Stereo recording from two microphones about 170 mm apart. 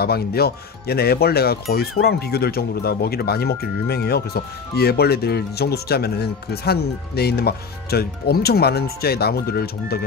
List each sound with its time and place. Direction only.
0.0 s speech: 65° left (ahead or behind)